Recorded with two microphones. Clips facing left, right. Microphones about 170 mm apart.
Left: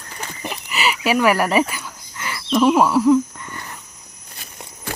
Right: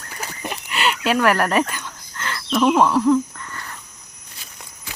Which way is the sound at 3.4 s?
15° left (ahead or behind).